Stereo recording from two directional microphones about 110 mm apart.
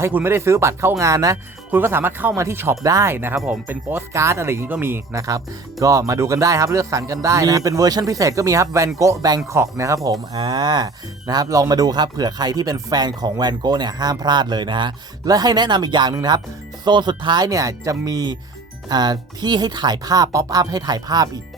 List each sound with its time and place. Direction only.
0.0 s speech: 20° right (ahead or behind)
9.0 s music: 35° right (ahead or behind)
9.5 s speech: 25° right (ahead or behind)
10.3 s music: 45° right (ahead or behind)